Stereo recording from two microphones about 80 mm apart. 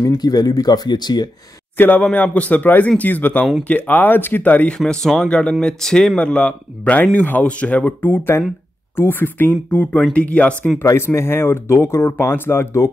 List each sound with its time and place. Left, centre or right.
0.0 s speech: left
1.8 s speech: centre
4.7 s speech: centre
10.8 s speech: left